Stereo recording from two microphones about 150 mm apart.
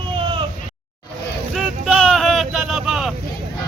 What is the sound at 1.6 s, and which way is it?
Vehicle, centre (ahead or behind).